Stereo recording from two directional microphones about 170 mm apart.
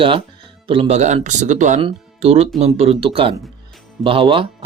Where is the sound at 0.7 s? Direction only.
35° right (ahead or behind).